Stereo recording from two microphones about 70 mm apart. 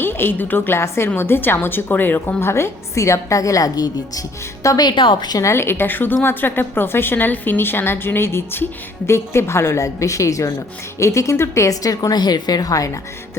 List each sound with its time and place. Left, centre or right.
0.0 s a woman's voice: left
4.8 s a woman's voice: left
5.4 s a woman's voice: left
12.2 s speech: left